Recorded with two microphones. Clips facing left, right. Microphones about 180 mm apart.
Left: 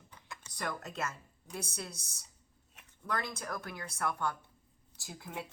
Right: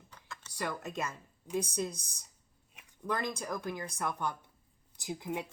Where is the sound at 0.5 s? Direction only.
10° right (ahead or behind).